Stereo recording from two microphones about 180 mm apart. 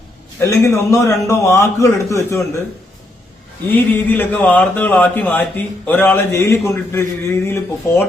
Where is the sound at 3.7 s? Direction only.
10° left (ahead or behind).